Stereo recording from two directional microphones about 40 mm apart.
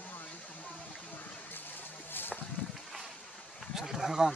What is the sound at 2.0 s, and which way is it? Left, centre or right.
Boat, left.